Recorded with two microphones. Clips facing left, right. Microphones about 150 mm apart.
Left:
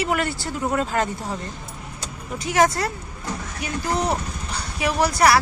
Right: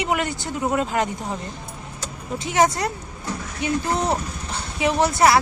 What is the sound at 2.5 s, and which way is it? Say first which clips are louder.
Speech: even; 20° right (ahead or behind).